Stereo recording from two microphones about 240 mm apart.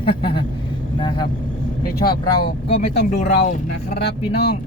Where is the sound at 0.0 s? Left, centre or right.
Left.